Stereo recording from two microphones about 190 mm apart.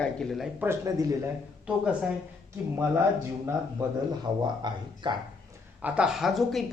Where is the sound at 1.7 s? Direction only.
5° right (ahead or behind).